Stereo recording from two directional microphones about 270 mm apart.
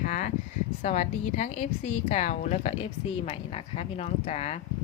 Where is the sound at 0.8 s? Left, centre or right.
Left.